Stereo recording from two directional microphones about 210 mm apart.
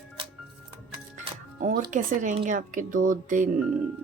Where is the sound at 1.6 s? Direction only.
40° right (ahead or behind).